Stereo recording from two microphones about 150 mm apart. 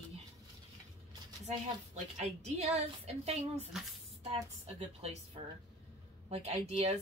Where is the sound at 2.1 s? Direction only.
45° right (ahead or behind).